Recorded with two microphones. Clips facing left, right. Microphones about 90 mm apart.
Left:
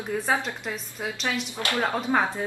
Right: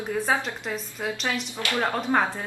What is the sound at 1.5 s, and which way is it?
Speech, 25° left (ahead or behind).